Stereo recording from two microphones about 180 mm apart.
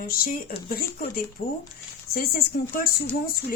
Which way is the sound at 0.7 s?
55° left (ahead or behind).